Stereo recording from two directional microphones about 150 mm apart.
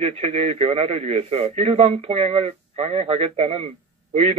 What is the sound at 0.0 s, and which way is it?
A man's voice, 40° right (ahead or behind).